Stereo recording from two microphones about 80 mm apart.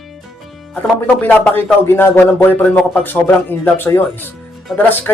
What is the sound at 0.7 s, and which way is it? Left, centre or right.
Speech, centre.